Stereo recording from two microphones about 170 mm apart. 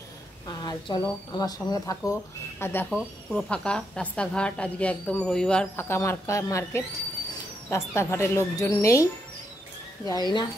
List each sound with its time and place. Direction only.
0.5 s a woman's voice: 25° left (ahead or behind)
10.0 s speech: 25° left (ahead or behind)